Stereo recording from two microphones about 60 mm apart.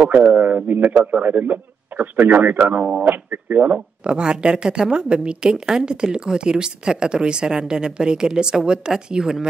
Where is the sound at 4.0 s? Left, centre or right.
Centre.